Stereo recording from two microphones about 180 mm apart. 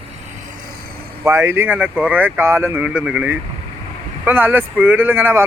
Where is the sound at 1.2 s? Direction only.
15° right (ahead or behind).